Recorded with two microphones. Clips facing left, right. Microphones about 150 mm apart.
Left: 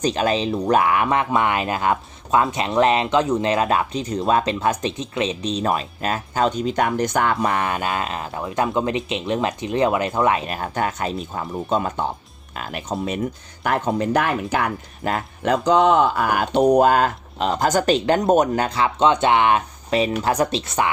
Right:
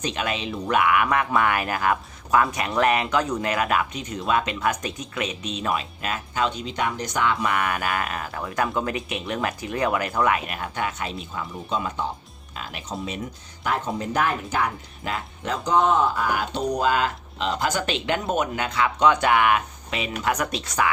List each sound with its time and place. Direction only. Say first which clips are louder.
0.0 s speech: left 7 dB; 35° left (ahead or behind); by 7.3 s 55° left (ahead or behind)
7.4 s speech: left 3 dB; 30° left (ahead or behind)